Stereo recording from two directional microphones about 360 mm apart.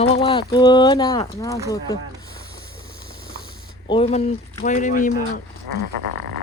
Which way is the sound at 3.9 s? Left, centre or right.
Centre.